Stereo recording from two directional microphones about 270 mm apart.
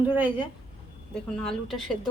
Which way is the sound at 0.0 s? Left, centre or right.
Centre.